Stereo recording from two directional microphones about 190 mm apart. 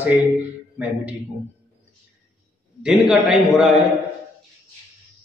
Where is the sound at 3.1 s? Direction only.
5° right (ahead or behind).